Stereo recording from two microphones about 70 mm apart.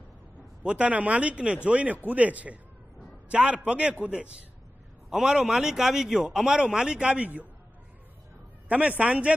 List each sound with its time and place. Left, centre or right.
0.7 s a man's voice: centre
5.1 s a man's voice: centre
8.6 s speech: right